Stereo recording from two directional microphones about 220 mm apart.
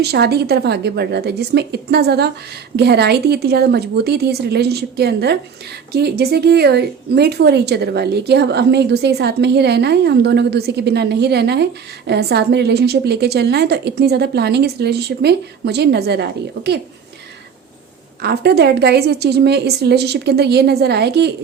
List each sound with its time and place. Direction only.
0.0 s a woman's voice: 45° right (ahead or behind)
18.2 s a woman's voice: 45° right (ahead or behind)